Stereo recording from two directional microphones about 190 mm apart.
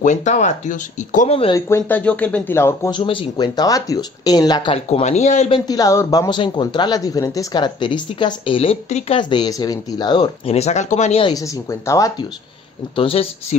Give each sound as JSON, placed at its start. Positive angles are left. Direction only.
{"t": 0.0, "sound": "speech", "side_deg": 40}
{"t": 1.5, "sound": "speech", "side_deg": 10}
{"t": 2.9, "sound": "speech", "side_deg": 25}
{"t": 5.7, "sound": "speech", "side_deg": 15}
{"t": 11.3, "sound": "speech", "side_deg": 15}
{"t": 12.9, "sound": "speech", "side_deg": 30}